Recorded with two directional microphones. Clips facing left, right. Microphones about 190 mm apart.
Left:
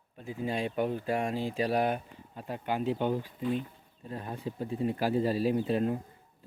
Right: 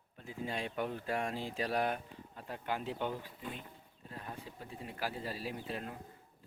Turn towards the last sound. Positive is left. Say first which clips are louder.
# left 13 dB
turn(degrees=30)  # may be behind; listen again after turning